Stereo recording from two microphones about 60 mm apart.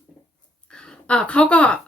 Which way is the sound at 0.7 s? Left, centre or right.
Centre.